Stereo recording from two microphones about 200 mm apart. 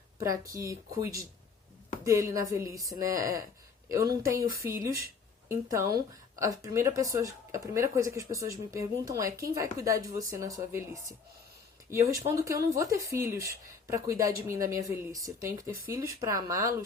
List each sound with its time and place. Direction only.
0.2 s speech: 15° right (ahead or behind)
11.9 s speech: 15° right (ahead or behind)